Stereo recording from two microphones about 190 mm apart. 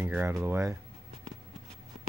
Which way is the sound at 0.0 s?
10° right (ahead or behind).